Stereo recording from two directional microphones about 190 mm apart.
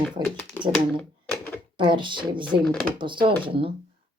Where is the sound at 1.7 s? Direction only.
25° right (ahead or behind).